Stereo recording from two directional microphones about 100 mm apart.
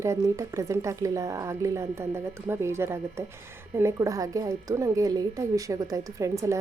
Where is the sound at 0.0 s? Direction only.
30° right (ahead or behind).